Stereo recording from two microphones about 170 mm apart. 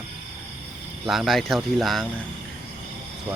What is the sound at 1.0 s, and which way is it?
Speech, centre (ahead or behind).